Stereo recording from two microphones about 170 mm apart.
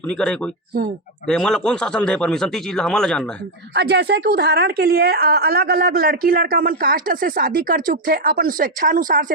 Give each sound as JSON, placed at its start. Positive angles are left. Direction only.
{"t": 0.1, "sound": "speech", "side_deg": 5}
{"t": 3.8, "sound": "a woman's voice", "side_deg": -80}